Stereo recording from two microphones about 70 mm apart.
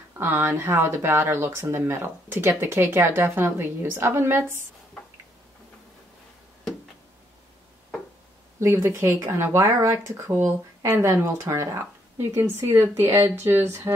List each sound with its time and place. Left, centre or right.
0.2 s speech: right
8.5 s speech: right